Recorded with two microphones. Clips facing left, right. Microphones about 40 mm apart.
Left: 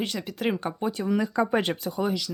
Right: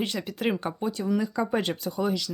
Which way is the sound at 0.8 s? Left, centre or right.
Left.